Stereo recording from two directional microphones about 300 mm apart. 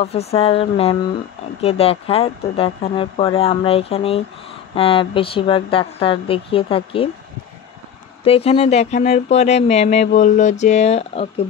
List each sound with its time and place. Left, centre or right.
0.0 s a woman's voice: left
8.2 s speech: centre